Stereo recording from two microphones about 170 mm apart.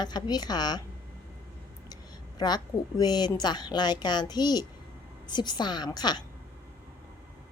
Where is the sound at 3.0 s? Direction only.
25° left (ahead or behind).